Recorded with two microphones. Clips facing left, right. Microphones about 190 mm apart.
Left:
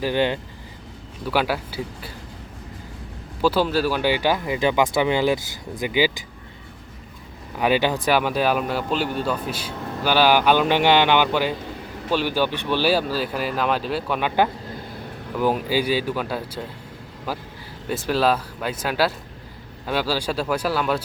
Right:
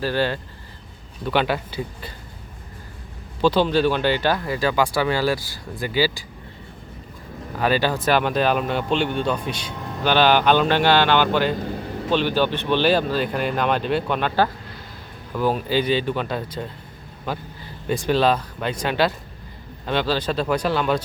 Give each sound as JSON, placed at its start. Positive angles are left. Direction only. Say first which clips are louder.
{"t": 0.0, "sound": "speech", "louder": "left 1 dB", "side_deg": 20}
{"t": 1.2, "sound": "speech", "louder": "right 1 dB", "side_deg": 5}
{"t": 3.4, "sound": "speech", "louder": "right 2 dB", "side_deg": 5}
{"t": 7.6, "sound": "speech", "louder": "left 1 dB", "side_deg": 15}